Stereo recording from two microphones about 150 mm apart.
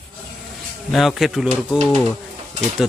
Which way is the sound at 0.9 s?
Centre (ahead or behind).